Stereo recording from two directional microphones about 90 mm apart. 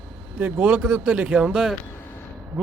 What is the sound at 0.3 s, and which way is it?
A man's voice, 20° right (ahead or behind).